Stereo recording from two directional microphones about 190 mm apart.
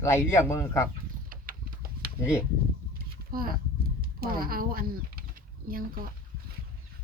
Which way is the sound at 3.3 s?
50° right (ahead or behind).